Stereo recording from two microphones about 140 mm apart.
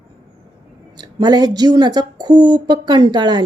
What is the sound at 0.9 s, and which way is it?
Speech, 30° right (ahead or behind).